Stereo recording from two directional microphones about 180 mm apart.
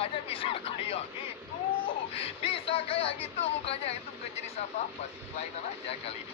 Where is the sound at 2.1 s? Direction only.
30° left (ahead or behind).